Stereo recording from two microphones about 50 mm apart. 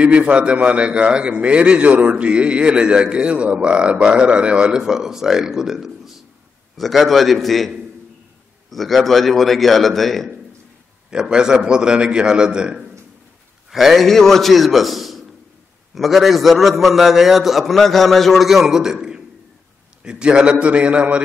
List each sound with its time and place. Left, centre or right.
0.0 s a man's voice: right; by 10.3 s centre
11.1 s a man's voice: centre
13.7 s a man's voice: centre
14.0 s a man's voice: centre; by 21.2 s right